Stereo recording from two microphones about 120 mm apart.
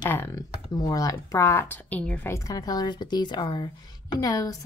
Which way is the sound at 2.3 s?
30° left (ahead or behind).